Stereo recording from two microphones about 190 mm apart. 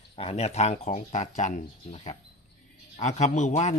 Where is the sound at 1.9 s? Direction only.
30° left (ahead or behind).